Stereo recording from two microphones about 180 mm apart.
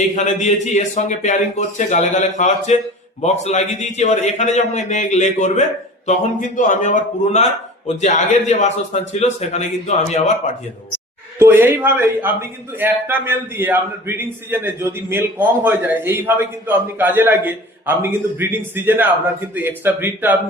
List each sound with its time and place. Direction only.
0.2 s a man's voice: 40° left (ahead or behind)
11.3 s a man's voice: 10° right (ahead or behind)